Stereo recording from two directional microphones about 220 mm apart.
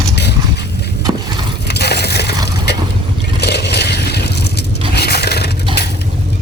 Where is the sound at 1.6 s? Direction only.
50° left (ahead or behind).